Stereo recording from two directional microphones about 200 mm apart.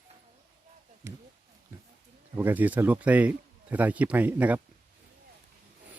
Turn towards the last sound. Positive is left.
turn(degrees=-10)  # may be behind; listen again after turning